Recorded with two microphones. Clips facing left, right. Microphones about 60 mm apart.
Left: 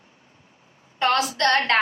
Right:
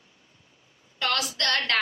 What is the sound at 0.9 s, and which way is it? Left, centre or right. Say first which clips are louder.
Speech: left 7 dB; left.